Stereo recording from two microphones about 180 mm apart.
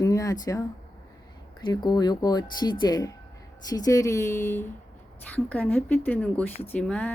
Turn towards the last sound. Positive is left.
turn(degrees=5)  # may be behind; listen again after turning